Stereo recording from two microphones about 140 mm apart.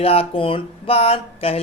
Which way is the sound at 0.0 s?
45° left (ahead or behind).